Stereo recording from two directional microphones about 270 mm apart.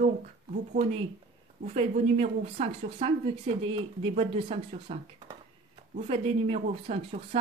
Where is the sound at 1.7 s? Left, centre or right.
Right.